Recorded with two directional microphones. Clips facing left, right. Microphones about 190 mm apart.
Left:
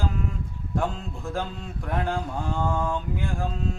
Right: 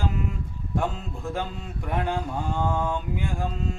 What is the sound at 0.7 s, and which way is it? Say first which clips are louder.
Speech: even; 5° right (ahead or behind).